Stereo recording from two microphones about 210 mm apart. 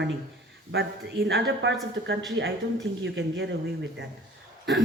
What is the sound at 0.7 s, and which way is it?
A man's voice, 55° right (ahead or behind).